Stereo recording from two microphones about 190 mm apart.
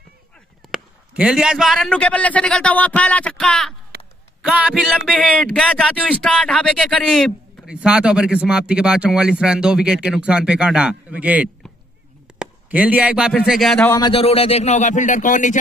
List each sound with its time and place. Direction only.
0.7 s speech: 5° right (ahead or behind)
3.9 s a sound: 55° right (ahead or behind)
4.4 s speech: 5° right (ahead or behind)
13.8 s a man's voice: 20° left (ahead or behind); by 15.5 s 40° left (ahead or behind)